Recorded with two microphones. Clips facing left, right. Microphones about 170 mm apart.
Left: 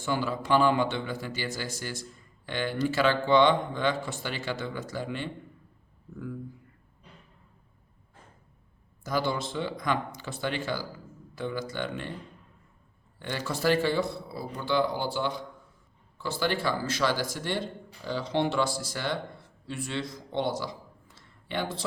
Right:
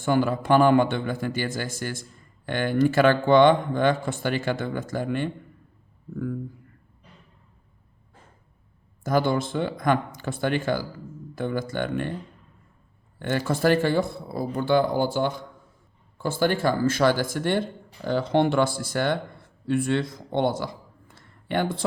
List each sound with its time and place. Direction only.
0.0 s speech: 55° right (ahead or behind)
9.0 s speech: 50° right (ahead or behind)
13.1 s speech: 50° right (ahead or behind)